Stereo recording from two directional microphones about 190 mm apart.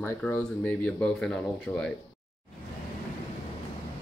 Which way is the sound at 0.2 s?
5° left (ahead or behind).